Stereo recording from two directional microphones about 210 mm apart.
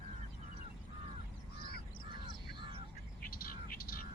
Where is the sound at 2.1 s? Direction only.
20° right (ahead or behind).